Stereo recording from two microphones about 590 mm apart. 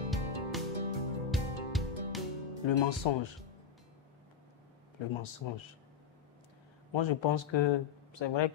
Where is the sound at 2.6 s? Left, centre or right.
Left.